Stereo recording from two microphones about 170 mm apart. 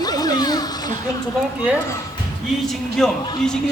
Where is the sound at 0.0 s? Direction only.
20° left (ahead or behind).